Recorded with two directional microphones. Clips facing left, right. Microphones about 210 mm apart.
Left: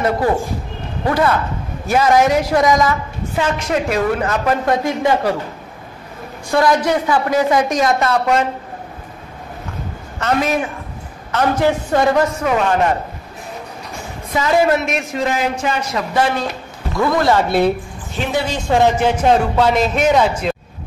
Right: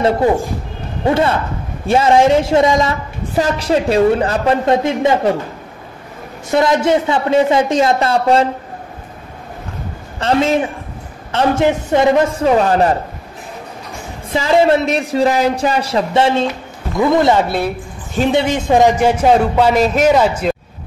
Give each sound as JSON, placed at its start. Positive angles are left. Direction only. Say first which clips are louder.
{"t": 1.0, "sound": "a woman's voice", "louder": "right 2 dB", "side_deg": -25}
{"t": 6.5, "sound": "a woman's voice", "louder": "right 2 dB", "side_deg": -25}
{"t": 10.1, "sound": "a woman's voice", "louder": "right 3 dB", "side_deg": -30}
{"t": 14.3, "sound": "a man's voice", "louder": "right 3 dB", "side_deg": -25}